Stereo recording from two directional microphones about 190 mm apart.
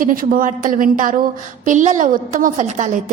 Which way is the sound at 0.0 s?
45° right (ahead or behind).